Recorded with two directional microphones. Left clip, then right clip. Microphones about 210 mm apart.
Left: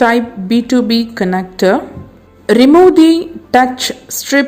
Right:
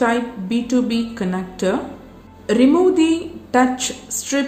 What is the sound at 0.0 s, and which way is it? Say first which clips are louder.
A woman's voice: left 8 dB; 40° left (ahead or behind).